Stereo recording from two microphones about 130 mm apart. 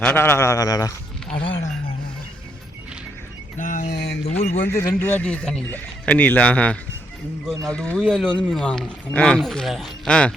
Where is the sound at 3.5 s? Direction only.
85° left.